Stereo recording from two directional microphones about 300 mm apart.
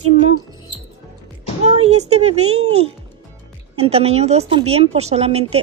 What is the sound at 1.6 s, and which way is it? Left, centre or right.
Speech, right.